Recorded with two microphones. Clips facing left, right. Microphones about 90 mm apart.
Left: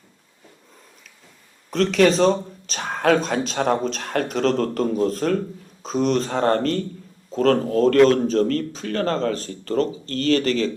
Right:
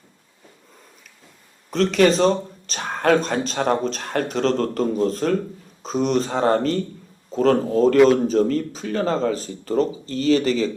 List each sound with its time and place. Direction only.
1.7 s speech: centre (ahead or behind)